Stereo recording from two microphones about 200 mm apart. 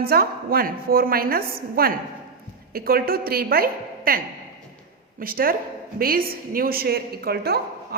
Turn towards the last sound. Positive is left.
turn(degrees=-50)  # may be behind; listen again after turning